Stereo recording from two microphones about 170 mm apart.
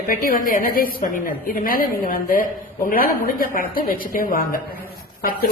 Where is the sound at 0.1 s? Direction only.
55° left (ahead or behind).